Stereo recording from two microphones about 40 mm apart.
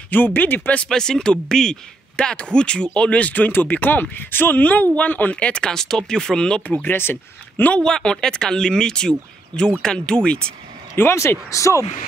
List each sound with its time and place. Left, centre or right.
0.1 s speech: left
0.8 s speech: centre
2.1 s speech: left
4.6 s speech: left
5.4 s speech: left
5.7 s speech: centre
6.8 s speech: left
7.8 s speech: centre
11.0 s speech: left